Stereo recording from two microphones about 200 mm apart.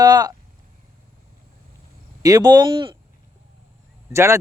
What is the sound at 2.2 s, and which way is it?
Speech, 20° right (ahead or behind).